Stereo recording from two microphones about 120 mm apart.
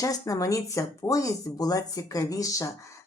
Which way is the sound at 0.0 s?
30° left (ahead or behind).